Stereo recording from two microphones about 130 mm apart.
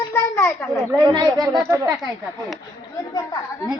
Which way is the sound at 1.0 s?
35° right (ahead or behind).